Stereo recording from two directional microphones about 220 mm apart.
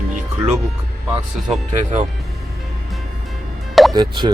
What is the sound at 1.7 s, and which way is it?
Speech, 35° right (ahead or behind).